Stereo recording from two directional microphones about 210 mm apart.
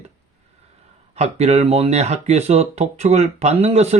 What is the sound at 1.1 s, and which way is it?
Speech, 30° right (ahead or behind).